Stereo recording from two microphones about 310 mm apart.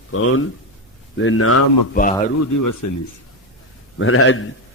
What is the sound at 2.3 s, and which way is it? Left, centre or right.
Speech, left.